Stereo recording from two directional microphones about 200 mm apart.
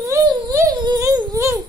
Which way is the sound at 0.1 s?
15° right (ahead or behind).